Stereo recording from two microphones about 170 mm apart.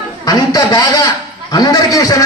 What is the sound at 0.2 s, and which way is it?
A man's voice, 20° left (ahead or behind).